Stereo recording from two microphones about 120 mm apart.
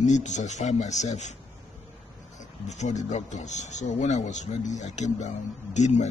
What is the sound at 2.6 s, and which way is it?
Speech, 80° left.